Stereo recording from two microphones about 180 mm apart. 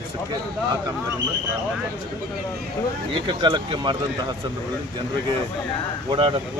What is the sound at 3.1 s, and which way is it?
Speech, 25° right (ahead or behind).